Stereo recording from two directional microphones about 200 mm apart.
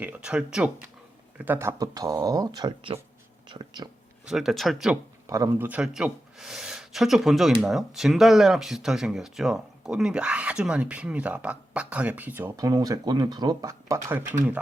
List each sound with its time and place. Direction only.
0.0 s speech: 5° right (ahead or behind); by 3.0 s 25° right (ahead or behind)
4.3 s speech: centre (ahead or behind)
5.2 s speech: 15° right (ahead or behind)